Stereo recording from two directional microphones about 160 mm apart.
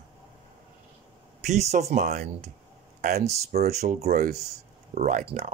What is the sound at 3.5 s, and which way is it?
Speech, 75° right (ahead or behind).